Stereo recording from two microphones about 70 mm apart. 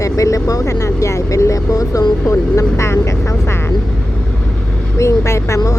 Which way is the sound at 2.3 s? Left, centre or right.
Left.